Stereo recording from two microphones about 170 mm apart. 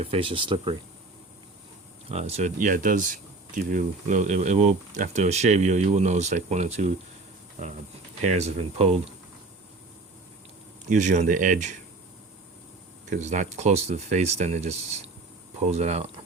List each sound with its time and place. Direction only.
0.0 s speech: 35° right (ahead or behind)
2.0 s speech: 40° right (ahead or behind)
8.2 s speech: 40° right (ahead or behind)
10.8 s speech: 45° right (ahead or behind)
13.1 s speech: 45° right (ahead or behind)